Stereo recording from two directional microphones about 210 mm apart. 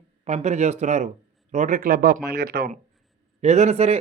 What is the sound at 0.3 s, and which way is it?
A man's voice, 30° right (ahead or behind).